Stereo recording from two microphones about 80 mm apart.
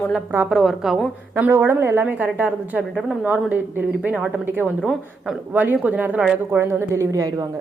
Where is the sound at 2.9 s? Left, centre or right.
Centre.